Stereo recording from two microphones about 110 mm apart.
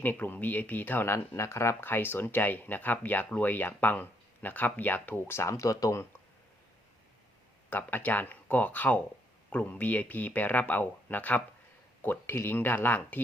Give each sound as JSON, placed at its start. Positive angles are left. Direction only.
{"t": 0.0, "sound": "speech", "side_deg": 15}
{"t": 7.7, "sound": "speech", "side_deg": 20}